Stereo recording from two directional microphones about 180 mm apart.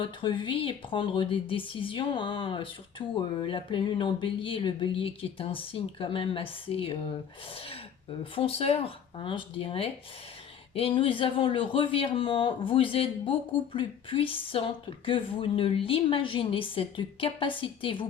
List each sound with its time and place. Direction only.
0.0 s speech: 30° left (ahead or behind)